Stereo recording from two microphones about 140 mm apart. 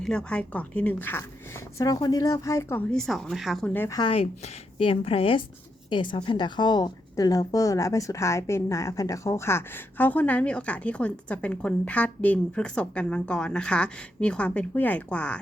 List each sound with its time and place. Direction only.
0.0 s a woman's voice: 5° left (ahead or behind)
2.9 s speech: 5° left (ahead or behind)
3.7 s a woman's voice: 15° left (ahead or behind)
3.9 s a woman's voice: 35° left (ahead or behind); by 15.4 s 10° left (ahead or behind)